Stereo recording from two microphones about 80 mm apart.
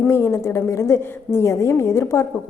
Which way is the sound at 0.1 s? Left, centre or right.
Left.